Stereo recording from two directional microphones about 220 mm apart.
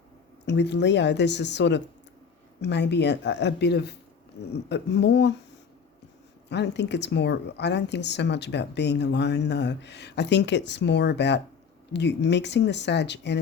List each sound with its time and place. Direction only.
0.4 s speech: 50° left (ahead or behind)
6.5 s speech: 50° left (ahead or behind)